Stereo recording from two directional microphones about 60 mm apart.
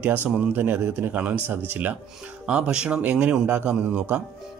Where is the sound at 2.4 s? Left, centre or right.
Centre.